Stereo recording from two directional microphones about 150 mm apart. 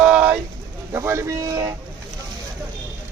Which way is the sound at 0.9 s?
20° right (ahead or behind).